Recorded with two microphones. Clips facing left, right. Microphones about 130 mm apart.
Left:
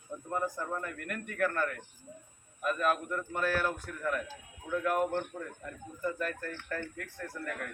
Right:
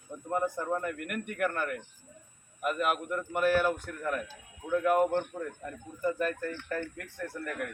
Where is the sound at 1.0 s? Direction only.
15° right (ahead or behind).